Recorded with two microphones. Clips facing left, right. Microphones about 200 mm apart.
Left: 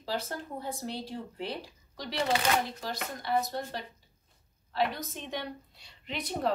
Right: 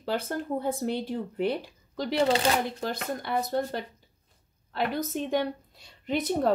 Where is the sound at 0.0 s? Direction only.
55° right (ahead or behind).